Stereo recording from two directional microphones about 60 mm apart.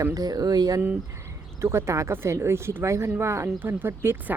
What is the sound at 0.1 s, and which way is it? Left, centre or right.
Speech, right.